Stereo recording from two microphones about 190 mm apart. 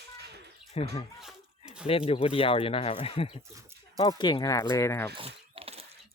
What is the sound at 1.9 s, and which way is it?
Speech, 30° left (ahead or behind).